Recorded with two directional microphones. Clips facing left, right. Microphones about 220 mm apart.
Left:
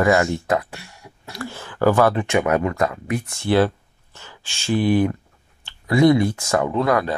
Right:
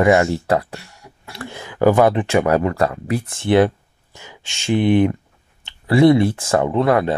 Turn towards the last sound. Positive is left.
turn(degrees=-25)  # may be behind; listen again after turning